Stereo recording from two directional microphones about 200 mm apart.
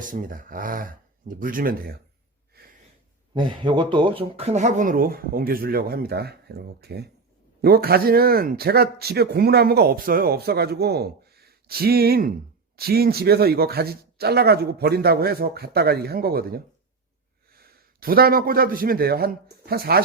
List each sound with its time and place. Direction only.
0.0 s speech: 40° right (ahead or behind)
3.3 s a man's voice: 25° right (ahead or behind); by 20.0 s 50° right (ahead or behind)